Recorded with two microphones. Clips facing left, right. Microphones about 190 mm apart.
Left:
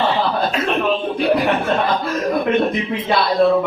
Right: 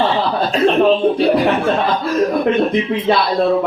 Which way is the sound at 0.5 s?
30° right (ahead or behind).